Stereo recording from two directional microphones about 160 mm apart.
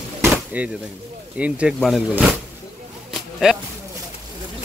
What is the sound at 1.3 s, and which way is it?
Speech, 10° right (ahead or behind).